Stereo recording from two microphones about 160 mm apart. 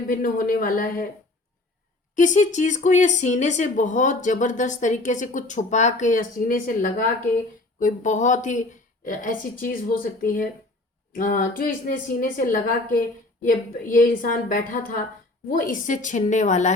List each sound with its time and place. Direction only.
0.1 s a woman's voice: 65° left (ahead or behind)
2.1 s a woman's voice: 50° left (ahead or behind)